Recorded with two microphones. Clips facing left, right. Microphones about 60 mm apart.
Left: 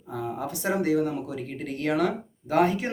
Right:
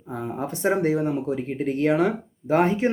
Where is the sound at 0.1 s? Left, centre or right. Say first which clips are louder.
Right 2 dB; right.